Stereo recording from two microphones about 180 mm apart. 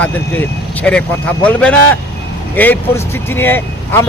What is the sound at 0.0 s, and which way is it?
A man's voice, 10° left (ahead or behind).